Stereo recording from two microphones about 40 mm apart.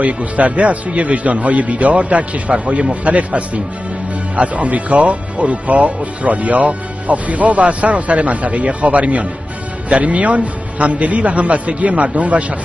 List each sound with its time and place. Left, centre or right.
0.0 s speech: right